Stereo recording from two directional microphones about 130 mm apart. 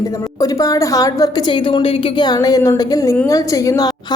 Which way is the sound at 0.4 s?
25° left (ahead or behind).